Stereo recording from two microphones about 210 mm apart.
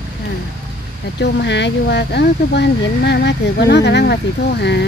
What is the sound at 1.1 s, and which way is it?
Speech, 55° left (ahead or behind).